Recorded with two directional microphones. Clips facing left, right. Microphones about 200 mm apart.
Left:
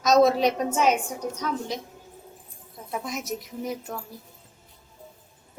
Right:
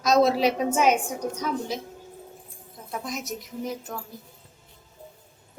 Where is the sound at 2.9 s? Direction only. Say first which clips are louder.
Left 1 dB; centre (ahead or behind).